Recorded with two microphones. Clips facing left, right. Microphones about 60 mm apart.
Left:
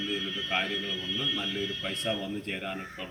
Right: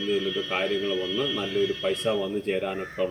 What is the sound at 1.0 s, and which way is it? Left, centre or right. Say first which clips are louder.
Speech: right 7 dB; right.